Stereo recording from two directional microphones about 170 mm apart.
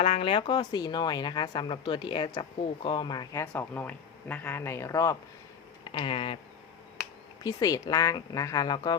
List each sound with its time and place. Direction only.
0.0 s speech: 35° left (ahead or behind)
3.5 s speech: 10° left (ahead or behind)
5.8 s speech: 30° left (ahead or behind)
7.4 s speech: 20° left (ahead or behind)